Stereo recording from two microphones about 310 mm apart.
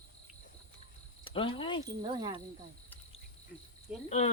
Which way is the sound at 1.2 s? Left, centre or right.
Centre.